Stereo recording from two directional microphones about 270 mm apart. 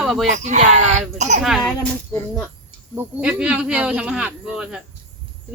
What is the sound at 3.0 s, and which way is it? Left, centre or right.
Speech, centre.